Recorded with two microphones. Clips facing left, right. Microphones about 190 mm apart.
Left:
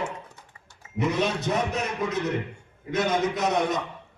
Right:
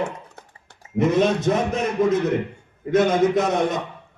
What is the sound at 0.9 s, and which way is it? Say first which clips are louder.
A man's voice: right 7 dB; 50° right (ahead or behind).